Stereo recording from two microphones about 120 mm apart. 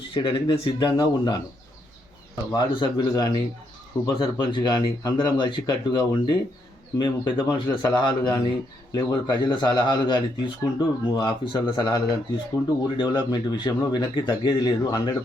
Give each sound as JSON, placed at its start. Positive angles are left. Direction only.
{"t": 0.1, "sound": "speech", "side_deg": 40}
{"t": 2.5, "sound": "speech", "side_deg": 35}